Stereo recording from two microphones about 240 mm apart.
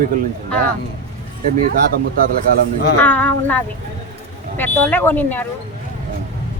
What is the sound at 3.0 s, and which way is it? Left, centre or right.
Speech, centre.